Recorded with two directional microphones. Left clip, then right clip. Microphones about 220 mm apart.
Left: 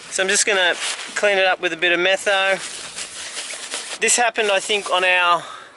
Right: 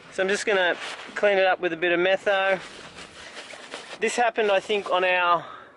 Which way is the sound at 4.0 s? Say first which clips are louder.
Left 4 dB; 5° right (ahead or behind).